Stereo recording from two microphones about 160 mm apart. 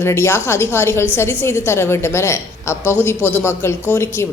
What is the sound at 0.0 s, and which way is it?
A woman's voice, 15° left (ahead or behind).